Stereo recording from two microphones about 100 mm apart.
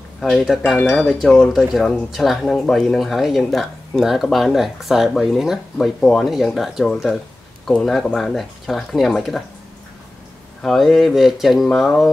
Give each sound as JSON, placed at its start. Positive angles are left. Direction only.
{"t": 0.2, "sound": "speech", "side_deg": 0}
{"t": 0.7, "sound": "speech", "side_deg": 20}
{"t": 1.0, "sound": "speech", "side_deg": 0}
{"t": 10.6, "sound": "speech", "side_deg": 5}